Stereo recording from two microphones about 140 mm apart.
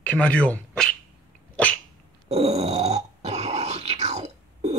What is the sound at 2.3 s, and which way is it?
Grunt, 50° right (ahead or behind).